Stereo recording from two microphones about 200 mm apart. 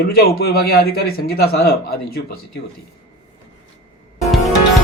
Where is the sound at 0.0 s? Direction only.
50° left (ahead or behind).